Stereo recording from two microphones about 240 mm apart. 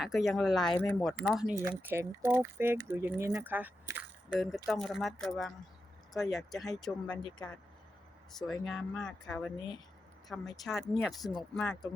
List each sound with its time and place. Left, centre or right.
0.0 s speech: centre
1.1 s speech: centre
7.2 s speech: centre
8.3 s speech: centre
9.6 s speech: centre
10.2 s speech: centre